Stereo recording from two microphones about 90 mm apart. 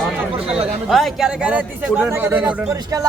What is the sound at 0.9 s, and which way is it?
Speech, centre (ahead or behind).